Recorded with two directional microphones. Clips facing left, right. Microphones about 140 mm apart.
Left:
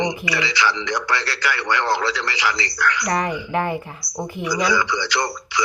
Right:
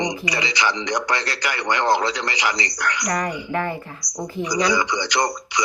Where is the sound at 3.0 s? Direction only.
25° left (ahead or behind).